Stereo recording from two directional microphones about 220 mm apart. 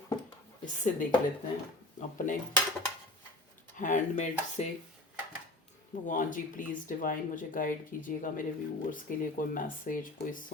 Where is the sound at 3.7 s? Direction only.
35° left (ahead or behind).